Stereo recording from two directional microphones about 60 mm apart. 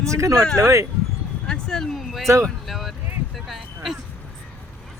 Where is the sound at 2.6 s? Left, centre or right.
Centre.